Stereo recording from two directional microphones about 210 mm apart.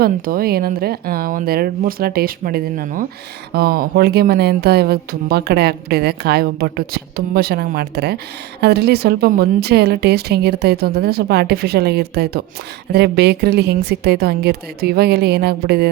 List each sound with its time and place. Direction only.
0.0 s speech: 45° right (ahead or behind)